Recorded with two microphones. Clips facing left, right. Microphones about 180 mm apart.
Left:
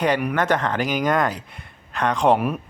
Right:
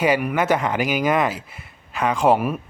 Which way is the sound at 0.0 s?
5° right (ahead or behind).